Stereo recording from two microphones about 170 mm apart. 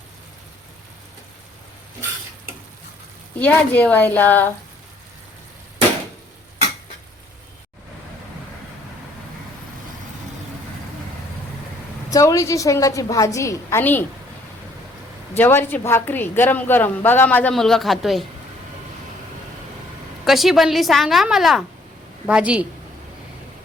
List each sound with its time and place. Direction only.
3.4 s a woman's voice: 10° left (ahead or behind)
12.1 s a woman's voice: 20° left (ahead or behind)
15.4 s a woman's voice: 15° left (ahead or behind)
20.2 s a woman's voice: centre (ahead or behind)